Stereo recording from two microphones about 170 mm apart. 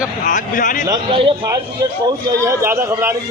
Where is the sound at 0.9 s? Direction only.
25° right (ahead or behind).